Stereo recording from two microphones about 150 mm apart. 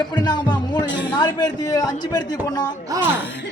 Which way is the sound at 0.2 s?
30° left (ahead or behind).